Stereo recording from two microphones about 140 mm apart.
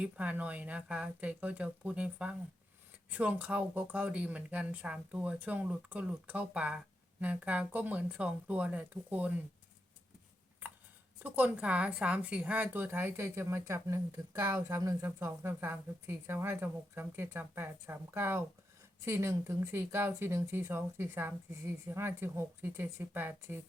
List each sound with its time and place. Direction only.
0.0 s a woman's voice: 10° right (ahead or behind)
11.2 s a woman's voice: 10° right (ahead or behind)